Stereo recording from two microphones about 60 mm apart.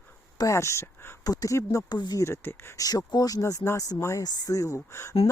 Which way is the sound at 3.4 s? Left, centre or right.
Left.